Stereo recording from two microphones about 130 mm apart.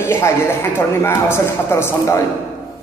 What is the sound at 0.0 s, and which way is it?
A man's voice, 20° left (ahead or behind).